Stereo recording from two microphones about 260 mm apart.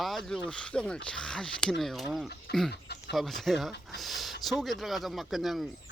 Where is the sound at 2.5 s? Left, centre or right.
Left.